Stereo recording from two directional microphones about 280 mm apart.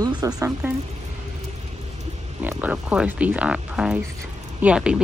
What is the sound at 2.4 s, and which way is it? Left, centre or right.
Speech, centre.